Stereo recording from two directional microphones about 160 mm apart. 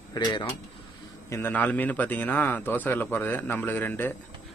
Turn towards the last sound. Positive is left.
turn(degrees=15)  # may be behind; listen again after turning